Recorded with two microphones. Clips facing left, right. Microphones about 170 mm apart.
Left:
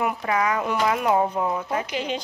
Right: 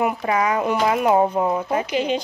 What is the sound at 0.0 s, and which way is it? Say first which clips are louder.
Speech: right 3 dB; 20° right (ahead or behind).